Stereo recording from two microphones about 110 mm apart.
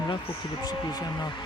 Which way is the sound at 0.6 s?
40° left (ahead or behind).